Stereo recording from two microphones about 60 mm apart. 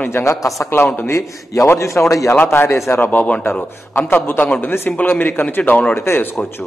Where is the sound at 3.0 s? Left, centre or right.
Left.